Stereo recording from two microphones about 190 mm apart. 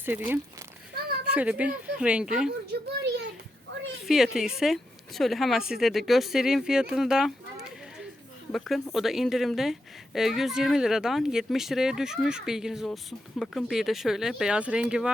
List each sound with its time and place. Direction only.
0.0 s speech: 10° right (ahead or behind)
0.9 s a sound: 55° right (ahead or behind)
1.3 s speech: 5° right (ahead or behind)
2.7 s a sound: 55° right (ahead or behind)
4.0 s a woman's voice: centre (ahead or behind)
8.5 s a woman's voice: centre (ahead or behind)